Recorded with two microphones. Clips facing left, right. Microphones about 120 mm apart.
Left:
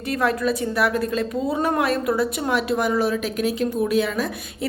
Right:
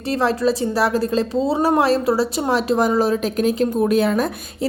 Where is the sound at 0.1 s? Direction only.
30° right (ahead or behind); by 4.3 s 45° right (ahead or behind).